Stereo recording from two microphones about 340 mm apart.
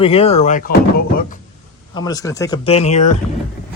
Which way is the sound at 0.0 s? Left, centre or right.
Centre.